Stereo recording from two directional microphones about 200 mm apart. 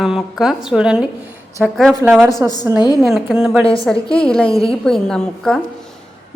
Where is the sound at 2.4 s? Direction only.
15° right (ahead or behind).